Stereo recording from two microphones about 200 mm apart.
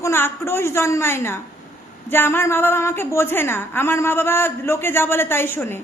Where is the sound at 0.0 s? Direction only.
10° left (ahead or behind).